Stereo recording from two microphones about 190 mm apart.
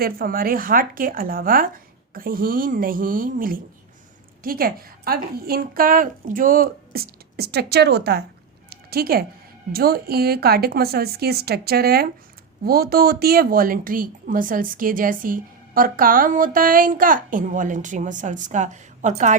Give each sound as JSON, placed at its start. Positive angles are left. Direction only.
{"t": 0.0, "sound": "a woman's voice", "side_deg": -50}
{"t": 8.7, "sound": "a sound", "side_deg": -55}
{"t": 9.7, "sound": "a woman's voice", "side_deg": -55}